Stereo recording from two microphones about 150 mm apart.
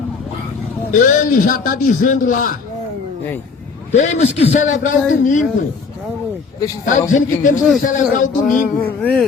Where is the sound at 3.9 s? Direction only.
50° left (ahead or behind).